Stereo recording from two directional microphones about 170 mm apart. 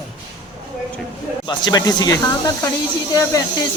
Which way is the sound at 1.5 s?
25° left (ahead or behind).